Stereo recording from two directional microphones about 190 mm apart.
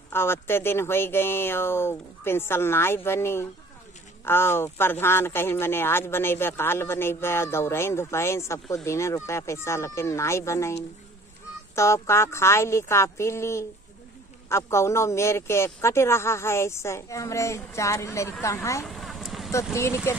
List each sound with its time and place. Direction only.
0.1 s speech: 10° left (ahead or behind)
18.9 s vehicle: centre (ahead or behind)
19.5 s speech: 15° left (ahead or behind)